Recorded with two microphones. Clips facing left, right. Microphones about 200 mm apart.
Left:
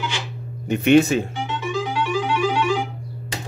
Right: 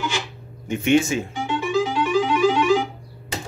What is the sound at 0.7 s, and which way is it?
Speech, 65° left (ahead or behind).